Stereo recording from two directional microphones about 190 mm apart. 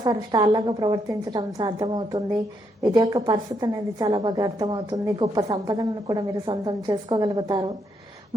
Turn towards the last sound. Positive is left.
turn(degrees=-20)  # may be behind; listen again after turning